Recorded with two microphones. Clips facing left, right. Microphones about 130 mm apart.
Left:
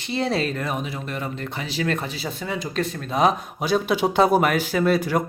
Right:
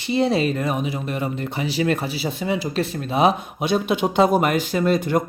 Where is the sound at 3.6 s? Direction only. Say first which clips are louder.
Even; 5° left (ahead or behind).